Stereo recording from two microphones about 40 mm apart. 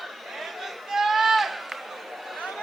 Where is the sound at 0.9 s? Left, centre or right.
Centre.